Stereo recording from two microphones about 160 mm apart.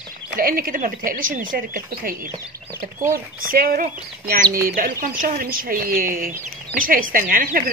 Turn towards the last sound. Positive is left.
turn(degrees=-65)  # may be behind; listen again after turning